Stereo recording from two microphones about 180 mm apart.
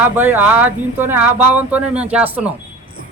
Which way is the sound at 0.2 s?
10° right (ahead or behind).